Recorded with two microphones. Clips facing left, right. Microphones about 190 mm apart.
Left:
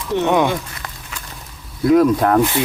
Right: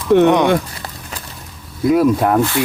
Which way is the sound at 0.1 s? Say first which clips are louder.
Right 9 dB; 60° right (ahead or behind).